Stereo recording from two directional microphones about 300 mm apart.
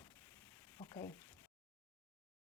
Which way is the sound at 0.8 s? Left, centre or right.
Centre.